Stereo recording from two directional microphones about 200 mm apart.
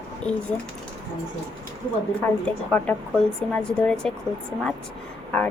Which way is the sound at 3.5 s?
5° left (ahead or behind).